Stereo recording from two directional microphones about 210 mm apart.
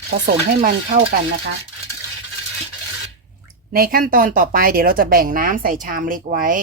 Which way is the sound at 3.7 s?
45° right (ahead or behind).